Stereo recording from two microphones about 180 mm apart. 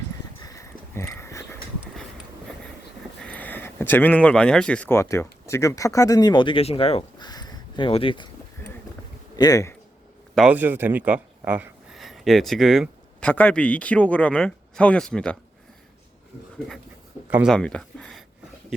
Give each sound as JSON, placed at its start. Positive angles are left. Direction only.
{"t": 0.4, "sound": "a sound", "side_deg": 15}
{"t": 3.2, "sound": "speech", "side_deg": 5}
{"t": 9.3, "sound": "a man's voice", "side_deg": 20}
{"t": 10.3, "sound": "speech", "side_deg": -5}
{"t": 17.2, "sound": "speech", "side_deg": -10}
{"t": 17.5, "sound": "speech", "side_deg": 5}